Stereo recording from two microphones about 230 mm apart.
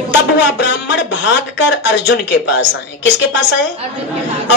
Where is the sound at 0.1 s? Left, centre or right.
Left.